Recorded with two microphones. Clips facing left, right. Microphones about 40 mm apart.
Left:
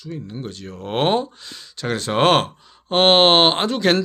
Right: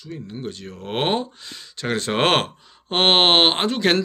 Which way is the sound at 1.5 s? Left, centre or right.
Right.